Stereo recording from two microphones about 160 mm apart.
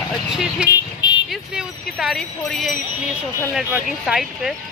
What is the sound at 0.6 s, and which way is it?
Vehicle, 30° left (ahead or behind).